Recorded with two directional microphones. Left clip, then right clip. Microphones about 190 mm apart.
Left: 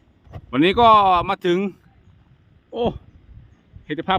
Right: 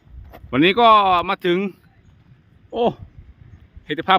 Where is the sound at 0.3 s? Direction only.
Centre (ahead or behind).